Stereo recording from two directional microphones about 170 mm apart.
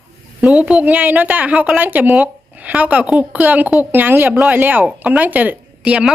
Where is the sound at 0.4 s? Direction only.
5° right (ahead or behind).